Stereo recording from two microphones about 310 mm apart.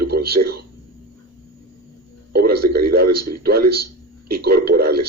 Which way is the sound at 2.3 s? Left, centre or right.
Right.